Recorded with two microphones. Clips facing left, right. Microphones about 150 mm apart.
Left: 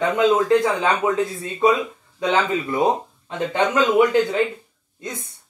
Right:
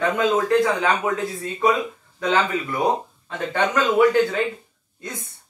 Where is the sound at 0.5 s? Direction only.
20° left (ahead or behind).